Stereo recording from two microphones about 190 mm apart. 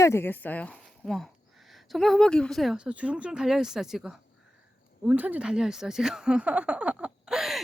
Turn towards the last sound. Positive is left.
turn(degrees=0)  # may be behind; listen again after turning